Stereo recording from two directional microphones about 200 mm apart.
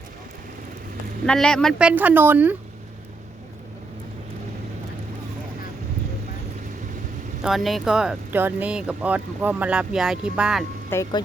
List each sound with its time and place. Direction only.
1.3 s speech: 5° left (ahead or behind)
7.4 s speech: centre (ahead or behind)
10.8 s speech: 15° left (ahead or behind)